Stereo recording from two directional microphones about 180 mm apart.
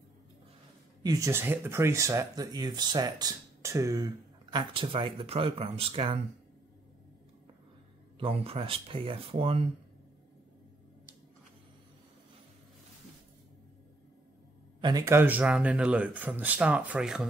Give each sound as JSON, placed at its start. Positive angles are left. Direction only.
{"t": 1.0, "sound": "speech", "side_deg": -20}
{"t": 8.2, "sound": "speech", "side_deg": -30}
{"t": 14.8, "sound": "speech", "side_deg": -20}